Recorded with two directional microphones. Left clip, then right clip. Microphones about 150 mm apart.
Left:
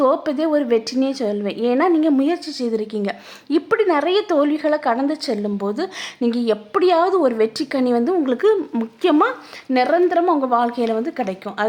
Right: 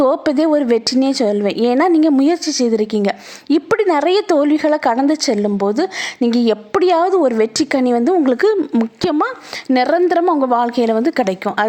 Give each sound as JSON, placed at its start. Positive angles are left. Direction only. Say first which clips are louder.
{"t": 0.0, "sound": "a woman's voice", "louder": "right 4 dB", "side_deg": -35}